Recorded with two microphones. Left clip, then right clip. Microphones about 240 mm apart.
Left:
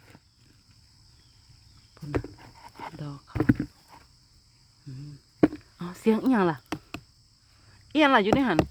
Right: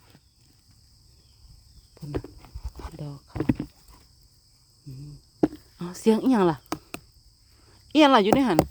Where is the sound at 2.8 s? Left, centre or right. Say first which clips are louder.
Left 2 dB; centre.